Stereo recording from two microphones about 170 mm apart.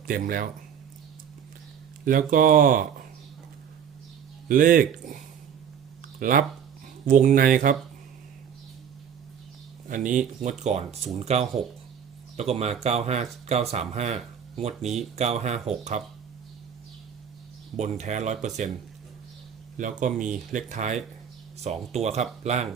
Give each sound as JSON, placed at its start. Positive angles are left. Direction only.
{"t": 0.1, "sound": "speech", "side_deg": -55}
{"t": 2.0, "sound": "speech", "side_deg": -55}
{"t": 4.4, "sound": "speech", "side_deg": -55}
{"t": 9.9, "sound": "speech", "side_deg": -50}
{"t": 17.7, "sound": "speech", "side_deg": -45}
{"t": 19.7, "sound": "speech", "side_deg": -50}